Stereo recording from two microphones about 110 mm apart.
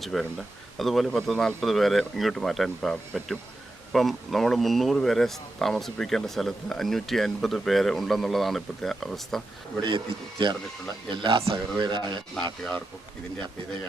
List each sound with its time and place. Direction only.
0.0 s speech: centre (ahead or behind)
9.8 s speech: 50° right (ahead or behind)